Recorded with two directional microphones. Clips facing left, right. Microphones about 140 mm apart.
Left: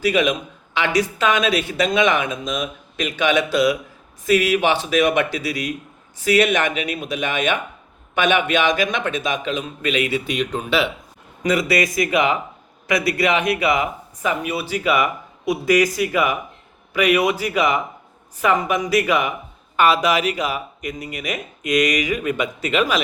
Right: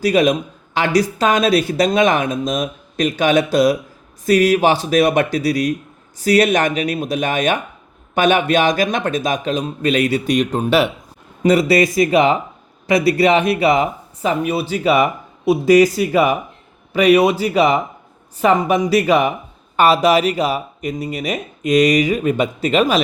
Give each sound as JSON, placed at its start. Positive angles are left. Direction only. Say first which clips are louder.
{"t": 0.0, "sound": "speech", "louder": "right 4 dB", "side_deg": -40}
{"t": 11.4, "sound": "speech", "louder": "right 6 dB", "side_deg": -30}